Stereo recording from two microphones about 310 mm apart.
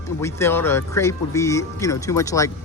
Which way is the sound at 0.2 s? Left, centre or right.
Centre.